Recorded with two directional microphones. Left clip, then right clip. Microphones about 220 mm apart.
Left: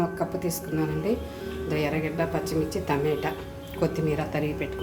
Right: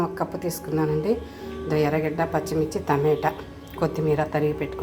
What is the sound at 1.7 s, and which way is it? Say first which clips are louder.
A woman's voice: right 5 dB; 10° right (ahead or behind).